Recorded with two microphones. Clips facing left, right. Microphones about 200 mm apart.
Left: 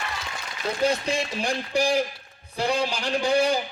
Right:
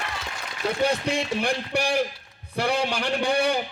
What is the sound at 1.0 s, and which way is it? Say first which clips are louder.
A man's voice: right 2 dB; 65° right (ahead or behind).